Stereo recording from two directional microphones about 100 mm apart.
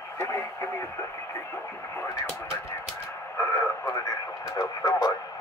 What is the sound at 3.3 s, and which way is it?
Speech, 30° left (ahead or behind).